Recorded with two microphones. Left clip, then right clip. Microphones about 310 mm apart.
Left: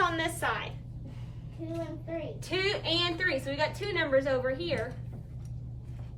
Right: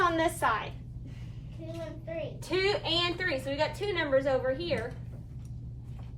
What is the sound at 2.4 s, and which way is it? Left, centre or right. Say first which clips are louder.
A woman's voice: right 2 dB; centre.